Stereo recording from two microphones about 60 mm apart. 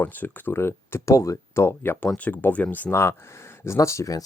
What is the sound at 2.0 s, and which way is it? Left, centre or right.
Speech, left.